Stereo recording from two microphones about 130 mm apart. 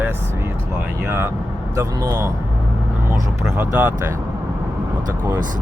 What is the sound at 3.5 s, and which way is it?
Speech, 15° right (ahead or behind).